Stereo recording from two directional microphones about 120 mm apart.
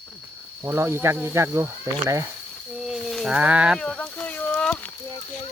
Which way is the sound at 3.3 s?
10° right (ahead or behind).